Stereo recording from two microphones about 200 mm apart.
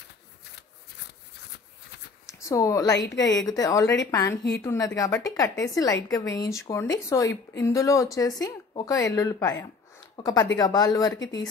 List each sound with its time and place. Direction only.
2.2 s a woman's voice: 15° left (ahead or behind)